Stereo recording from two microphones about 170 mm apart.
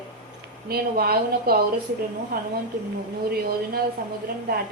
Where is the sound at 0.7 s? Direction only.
65° right (ahead or behind).